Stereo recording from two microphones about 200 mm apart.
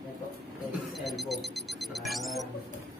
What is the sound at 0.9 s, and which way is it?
Speech, centre (ahead or behind).